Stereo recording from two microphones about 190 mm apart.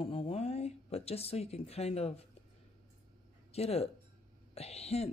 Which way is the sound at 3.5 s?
30° left (ahead or behind).